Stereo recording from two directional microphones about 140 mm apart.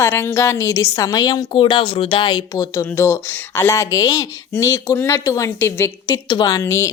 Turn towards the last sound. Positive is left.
turn(degrees=20)  # may be behind; listen again after turning